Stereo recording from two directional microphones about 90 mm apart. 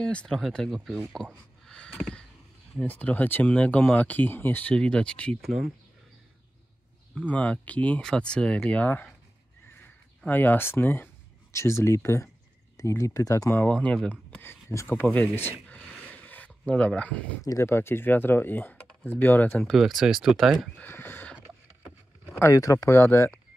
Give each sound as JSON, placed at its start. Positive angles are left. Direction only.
{"t": 0.0, "sound": "speech", "side_deg": 10}
{"t": 2.9, "sound": "speech", "side_deg": 20}
{"t": 5.4, "sound": "speech", "side_deg": 0}
{"t": 7.2, "sound": "speech", "side_deg": 15}
{"t": 13.7, "sound": "speech", "side_deg": 15}
{"t": 14.5, "sound": "speech", "side_deg": 35}
{"t": 16.3, "sound": "a sound", "side_deg": 15}
{"t": 17.5, "sound": "speech", "side_deg": 30}
{"t": 19.8, "sound": "speech", "side_deg": -5}
{"t": 20.7, "sound": "speech", "side_deg": 20}
{"t": 22.4, "sound": "speech", "side_deg": 40}